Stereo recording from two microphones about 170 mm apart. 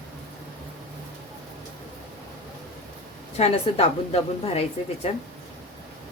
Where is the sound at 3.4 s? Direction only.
35° left (ahead or behind).